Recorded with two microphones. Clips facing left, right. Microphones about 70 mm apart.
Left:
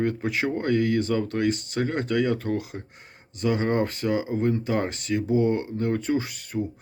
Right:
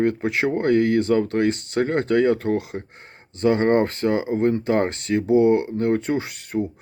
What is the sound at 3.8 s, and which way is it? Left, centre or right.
Speech, right.